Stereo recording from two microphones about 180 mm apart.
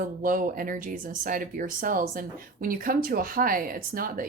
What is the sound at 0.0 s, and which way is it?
Speech, 50° right (ahead or behind).